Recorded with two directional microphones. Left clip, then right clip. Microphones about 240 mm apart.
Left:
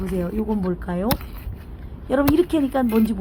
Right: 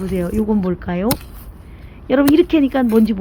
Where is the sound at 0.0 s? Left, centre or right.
Centre.